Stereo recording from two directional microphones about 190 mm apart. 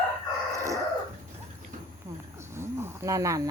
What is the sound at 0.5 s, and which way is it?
Dog, 15° right (ahead or behind).